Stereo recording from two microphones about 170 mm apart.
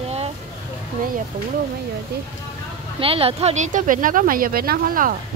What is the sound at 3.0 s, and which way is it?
Speech, 35° right (ahead or behind).